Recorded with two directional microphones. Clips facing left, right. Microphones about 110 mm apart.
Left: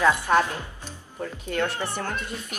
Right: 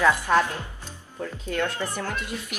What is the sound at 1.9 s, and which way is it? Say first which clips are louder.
Speech: even; 5° right (ahead or behind).